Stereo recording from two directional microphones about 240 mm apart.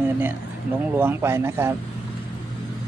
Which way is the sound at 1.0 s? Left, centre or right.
Centre.